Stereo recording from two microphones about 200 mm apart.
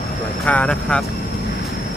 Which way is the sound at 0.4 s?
5° left (ahead or behind).